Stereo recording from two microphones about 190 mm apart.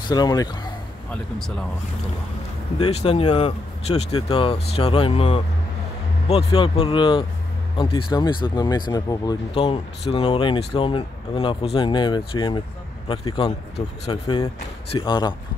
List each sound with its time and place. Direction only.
0.1 s speech: 20° left (ahead or behind)
2.8 s speech: 30° left (ahead or behind)